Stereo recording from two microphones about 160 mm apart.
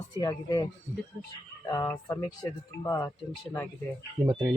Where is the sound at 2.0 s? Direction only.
20° left (ahead or behind).